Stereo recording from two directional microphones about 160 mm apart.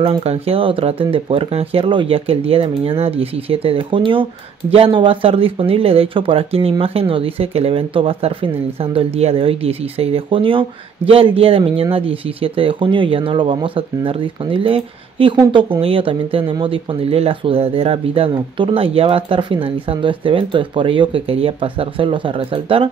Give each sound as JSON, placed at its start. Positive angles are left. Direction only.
{"t": 0.0, "sound": "speech", "side_deg": -35}